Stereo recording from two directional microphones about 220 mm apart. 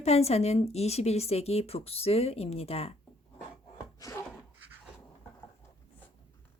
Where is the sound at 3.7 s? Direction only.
15° left (ahead or behind).